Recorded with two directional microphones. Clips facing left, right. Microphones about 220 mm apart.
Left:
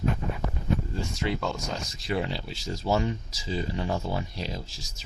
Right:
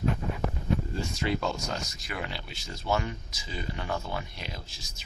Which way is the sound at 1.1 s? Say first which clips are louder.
Even; 20° left (ahead or behind).